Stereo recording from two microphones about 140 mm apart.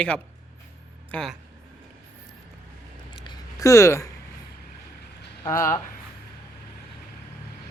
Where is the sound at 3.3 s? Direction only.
20° left (ahead or behind).